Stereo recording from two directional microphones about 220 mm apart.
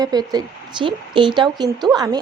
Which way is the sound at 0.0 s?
15° right (ahead or behind).